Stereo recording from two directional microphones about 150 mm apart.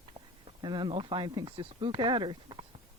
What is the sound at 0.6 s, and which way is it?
Speech, 30° right (ahead or behind).